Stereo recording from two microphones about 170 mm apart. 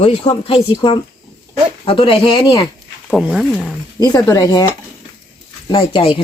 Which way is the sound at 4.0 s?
20° left (ahead or behind).